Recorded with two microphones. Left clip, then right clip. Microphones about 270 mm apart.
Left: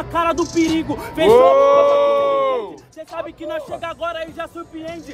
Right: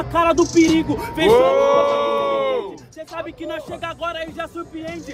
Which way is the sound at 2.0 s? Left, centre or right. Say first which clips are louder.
Left 4 dB; left.